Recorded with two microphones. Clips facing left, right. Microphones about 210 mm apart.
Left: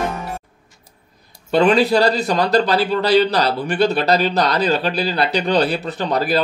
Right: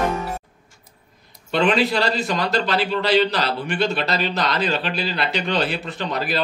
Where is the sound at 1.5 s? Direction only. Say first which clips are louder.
Left 5 dB; 40° left (ahead or behind).